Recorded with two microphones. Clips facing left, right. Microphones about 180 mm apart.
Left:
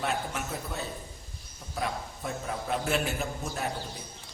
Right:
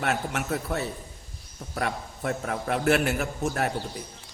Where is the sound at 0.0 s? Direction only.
75° right (ahead or behind).